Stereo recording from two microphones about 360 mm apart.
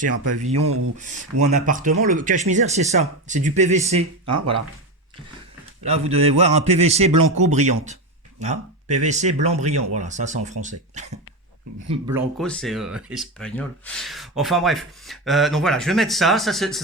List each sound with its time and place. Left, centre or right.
0.5 s a man's voice: centre
4.3 s speech: right
5.8 s a man's voice: centre
11.9 s a man's voice: centre
12.4 s speech: centre